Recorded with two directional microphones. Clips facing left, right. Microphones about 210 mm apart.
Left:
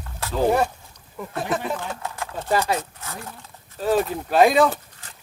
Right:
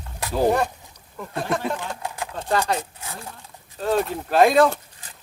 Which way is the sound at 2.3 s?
5° left (ahead or behind).